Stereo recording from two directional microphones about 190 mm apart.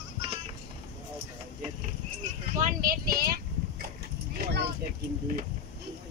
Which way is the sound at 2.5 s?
45° right (ahead or behind).